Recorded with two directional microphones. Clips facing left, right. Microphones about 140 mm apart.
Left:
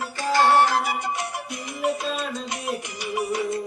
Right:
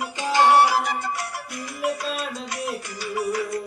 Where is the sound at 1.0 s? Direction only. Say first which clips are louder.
Left 1 dB; 20° left (ahead or behind).